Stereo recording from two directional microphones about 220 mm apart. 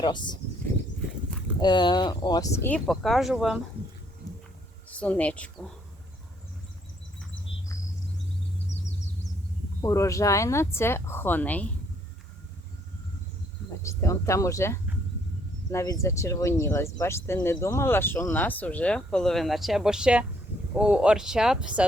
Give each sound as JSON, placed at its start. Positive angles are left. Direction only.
{"t": 0.0, "sound": "speech", "side_deg": 20}
{"t": 1.6, "sound": "speech", "side_deg": 20}
{"t": 4.9, "sound": "speech", "side_deg": 5}
{"t": 8.7, "sound": "vehicle", "side_deg": 30}
{"t": 9.8, "sound": "speech", "side_deg": 15}
{"t": 13.8, "sound": "speech", "side_deg": 15}